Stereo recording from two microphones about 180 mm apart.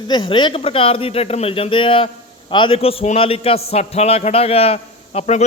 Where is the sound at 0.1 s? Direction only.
25° left (ahead or behind).